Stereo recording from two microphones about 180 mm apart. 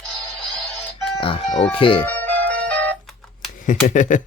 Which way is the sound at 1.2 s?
30° left (ahead or behind).